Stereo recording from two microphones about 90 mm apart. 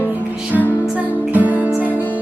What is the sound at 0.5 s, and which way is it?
Music, 5° right (ahead or behind).